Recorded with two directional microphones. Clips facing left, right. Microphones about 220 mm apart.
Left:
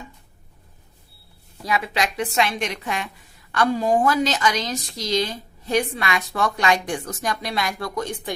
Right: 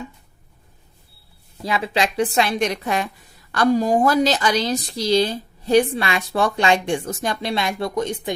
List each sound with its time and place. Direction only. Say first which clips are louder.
1.6 s a woman's voice: right 2 dB; 30° right (ahead or behind)